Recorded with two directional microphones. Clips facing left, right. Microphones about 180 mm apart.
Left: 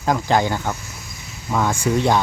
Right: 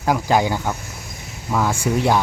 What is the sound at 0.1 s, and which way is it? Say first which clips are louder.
Speech: right 1 dB; 10° right (ahead or behind).